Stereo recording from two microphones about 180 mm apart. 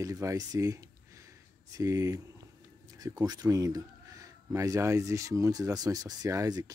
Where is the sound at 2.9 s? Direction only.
20° right (ahead or behind).